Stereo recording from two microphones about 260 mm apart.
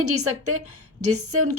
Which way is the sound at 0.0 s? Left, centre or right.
Right.